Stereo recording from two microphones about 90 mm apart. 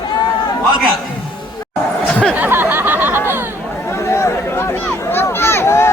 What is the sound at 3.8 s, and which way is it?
Chatter, 30° left (ahead or behind).